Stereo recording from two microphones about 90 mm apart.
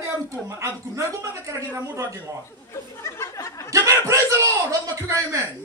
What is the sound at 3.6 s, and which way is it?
Chuckle, 35° right (ahead or behind).